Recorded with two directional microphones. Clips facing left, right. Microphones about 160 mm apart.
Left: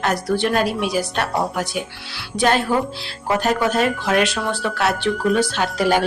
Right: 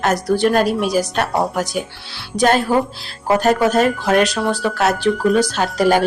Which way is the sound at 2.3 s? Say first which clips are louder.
Right 3 dB; 45° right (ahead or behind).